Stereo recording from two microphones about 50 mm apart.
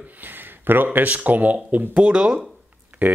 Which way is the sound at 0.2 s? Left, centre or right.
Right.